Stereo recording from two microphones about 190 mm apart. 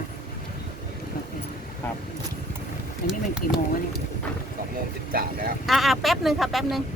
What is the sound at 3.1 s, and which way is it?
Speech, 5° right (ahead or behind).